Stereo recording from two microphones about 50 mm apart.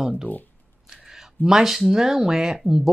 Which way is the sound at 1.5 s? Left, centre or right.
Centre.